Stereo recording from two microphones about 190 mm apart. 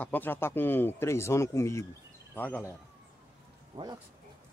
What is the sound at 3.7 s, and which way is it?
Speech, 20° right (ahead or behind).